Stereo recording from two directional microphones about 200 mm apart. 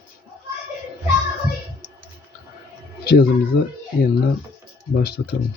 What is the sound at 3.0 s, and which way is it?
Speech, 50° left (ahead or behind).